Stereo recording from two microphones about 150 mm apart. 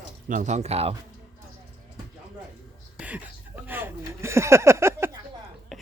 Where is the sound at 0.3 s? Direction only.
55° right (ahead or behind).